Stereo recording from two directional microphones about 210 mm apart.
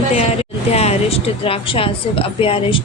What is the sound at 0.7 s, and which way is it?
A woman's voice, 30° left (ahead or behind).